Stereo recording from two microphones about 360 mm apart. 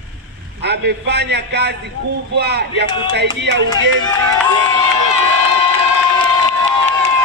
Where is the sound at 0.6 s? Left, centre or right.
Right.